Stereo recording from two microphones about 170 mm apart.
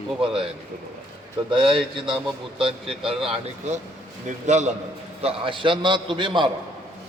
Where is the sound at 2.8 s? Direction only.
Centre (ahead or behind).